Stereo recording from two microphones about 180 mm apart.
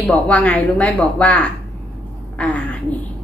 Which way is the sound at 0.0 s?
10° left (ahead or behind).